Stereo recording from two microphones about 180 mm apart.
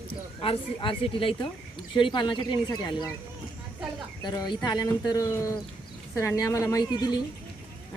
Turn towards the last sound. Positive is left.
turn(degrees=20)  # may be behind; listen again after turning